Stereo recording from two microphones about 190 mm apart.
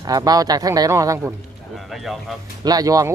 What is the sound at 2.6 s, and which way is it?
Speech, 20° right (ahead or behind).